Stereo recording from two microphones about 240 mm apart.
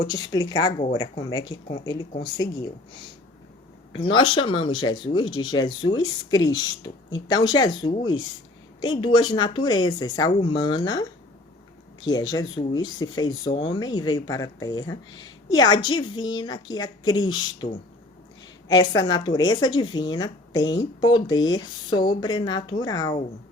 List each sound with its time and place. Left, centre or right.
0.1 s speech: centre
3.9 s speech: left
12.0 s speech: centre
18.7 s speech: centre